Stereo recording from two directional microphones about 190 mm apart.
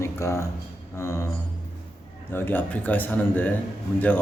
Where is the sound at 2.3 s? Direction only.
10° left (ahead or behind).